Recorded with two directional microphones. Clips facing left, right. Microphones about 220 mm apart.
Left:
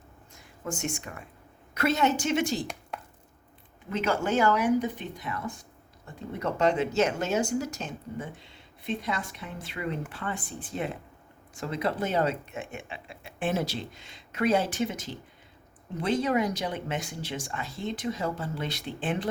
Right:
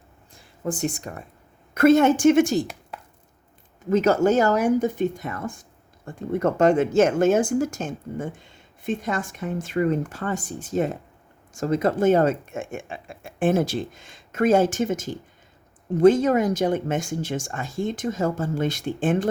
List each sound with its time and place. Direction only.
0.3 s speech: 35° right (ahead or behind)
1.7 s speech: 50° right (ahead or behind)
2.9 s a sound: centre (ahead or behind)
3.8 s speech: 40° right (ahead or behind)